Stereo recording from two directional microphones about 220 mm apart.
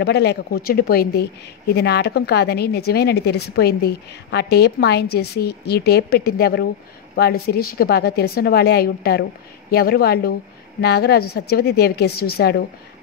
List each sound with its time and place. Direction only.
0.0 s a woman's voice: 50° left (ahead or behind)